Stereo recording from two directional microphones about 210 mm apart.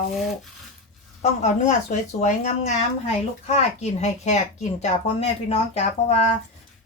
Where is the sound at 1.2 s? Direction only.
35° left (ahead or behind).